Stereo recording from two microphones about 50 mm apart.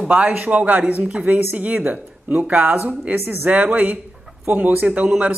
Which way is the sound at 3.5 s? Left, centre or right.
Right.